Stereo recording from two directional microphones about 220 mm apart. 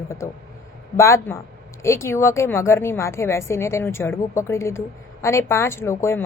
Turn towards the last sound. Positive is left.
turn(degrees=10)  # may be behind; listen again after turning